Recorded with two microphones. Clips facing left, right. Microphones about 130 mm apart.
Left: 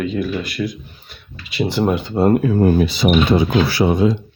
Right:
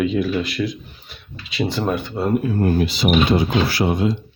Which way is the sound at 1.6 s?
10° left (ahead or behind).